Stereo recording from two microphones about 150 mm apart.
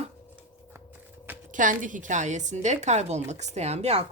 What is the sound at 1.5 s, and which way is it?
A woman's voice, 60° right (ahead or behind).